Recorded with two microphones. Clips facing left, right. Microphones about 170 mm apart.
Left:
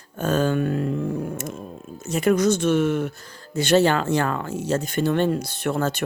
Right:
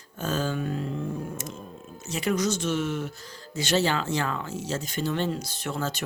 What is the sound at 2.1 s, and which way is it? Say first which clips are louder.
Speech: left 7 dB; 50° left (ahead or behind).